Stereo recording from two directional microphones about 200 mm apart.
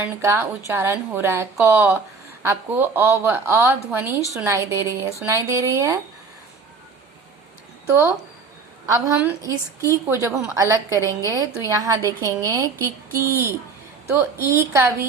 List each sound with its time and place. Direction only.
0.0 s a woman's voice: 10° right (ahead or behind)
7.9 s a woman's voice: 10° right (ahead or behind)